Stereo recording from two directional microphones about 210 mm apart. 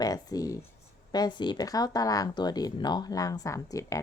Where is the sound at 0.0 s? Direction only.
15° left (ahead or behind).